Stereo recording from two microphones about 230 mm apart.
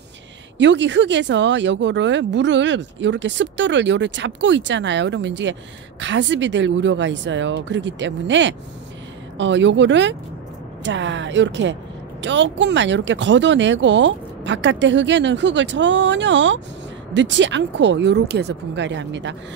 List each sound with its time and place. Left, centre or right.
0.6 s speech: right